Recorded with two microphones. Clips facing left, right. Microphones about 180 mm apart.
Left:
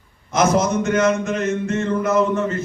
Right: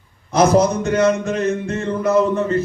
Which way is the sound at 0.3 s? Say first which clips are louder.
Right 3 dB; 35° right (ahead or behind).